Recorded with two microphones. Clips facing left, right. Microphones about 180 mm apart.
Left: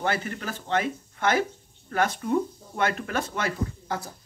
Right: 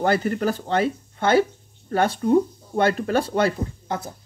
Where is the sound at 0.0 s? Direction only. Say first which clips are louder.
Right 8 dB; 40° right (ahead or behind).